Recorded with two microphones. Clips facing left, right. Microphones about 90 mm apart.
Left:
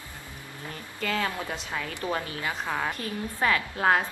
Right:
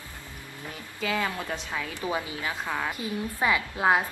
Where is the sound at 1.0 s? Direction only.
10° right (ahead or behind).